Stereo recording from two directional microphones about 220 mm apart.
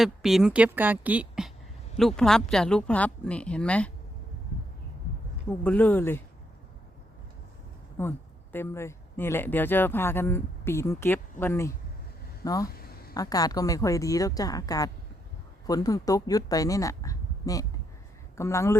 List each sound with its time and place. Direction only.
0.0 s speech: centre (ahead or behind)
5.5 s speech: 10° left (ahead or behind)
8.0 s speech: 10° left (ahead or behind)
12.6 s a sound: 45° left (ahead or behind)
13.1 s speech: 15° left (ahead or behind)